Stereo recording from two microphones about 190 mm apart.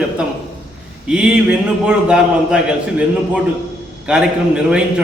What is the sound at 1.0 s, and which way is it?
A man's voice, 5° right (ahead or behind).